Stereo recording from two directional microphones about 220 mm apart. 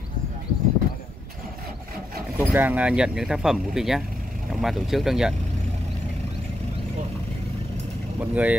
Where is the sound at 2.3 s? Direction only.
10° right (ahead or behind).